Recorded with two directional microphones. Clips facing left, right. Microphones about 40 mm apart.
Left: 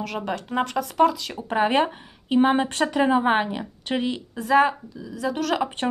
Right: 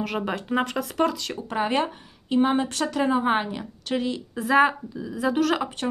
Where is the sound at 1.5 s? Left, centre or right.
Left.